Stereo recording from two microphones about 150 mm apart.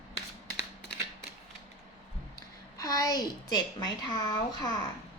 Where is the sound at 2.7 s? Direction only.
25° left (ahead or behind).